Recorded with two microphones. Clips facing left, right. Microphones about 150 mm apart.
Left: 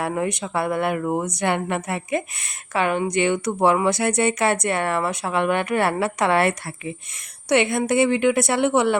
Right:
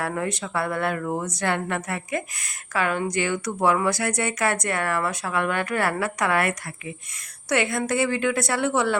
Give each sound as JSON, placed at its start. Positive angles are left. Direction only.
{"t": 0.0, "sound": "a woman's voice", "side_deg": 20}